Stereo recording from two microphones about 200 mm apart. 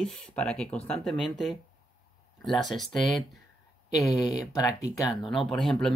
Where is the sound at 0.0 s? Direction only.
5° left (ahead or behind).